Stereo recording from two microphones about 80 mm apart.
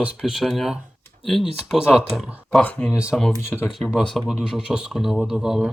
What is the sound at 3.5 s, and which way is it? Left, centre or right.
Speech, centre.